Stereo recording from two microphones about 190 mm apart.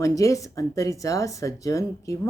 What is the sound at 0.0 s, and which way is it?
Speech, 15° left (ahead or behind).